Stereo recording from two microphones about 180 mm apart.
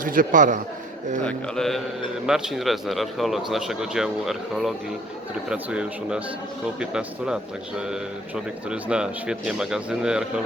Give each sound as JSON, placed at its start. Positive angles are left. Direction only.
{"t": 0.0, "sound": "a man's voice", "side_deg": -50}
{"t": 1.2, "sound": "speech", "side_deg": 5}
{"t": 8.7, "sound": "speech", "side_deg": -5}